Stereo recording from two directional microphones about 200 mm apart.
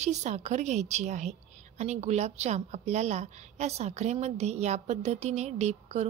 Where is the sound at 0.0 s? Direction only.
35° right (ahead or behind).